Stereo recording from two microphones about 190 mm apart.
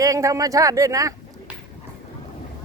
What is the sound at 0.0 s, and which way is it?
Speech, 15° right (ahead or behind).